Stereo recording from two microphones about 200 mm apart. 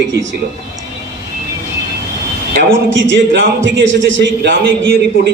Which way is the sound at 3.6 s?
65° right (ahead or behind).